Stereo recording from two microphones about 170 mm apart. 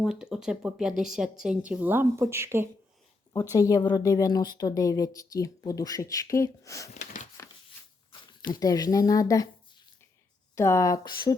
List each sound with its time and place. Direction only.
0.0 s speech: 5° right (ahead or behind)
3.5 s speech: 20° left (ahead or behind)
6.9 s a sound: 45° left (ahead or behind)
8.4 s speech: 20° left (ahead or behind)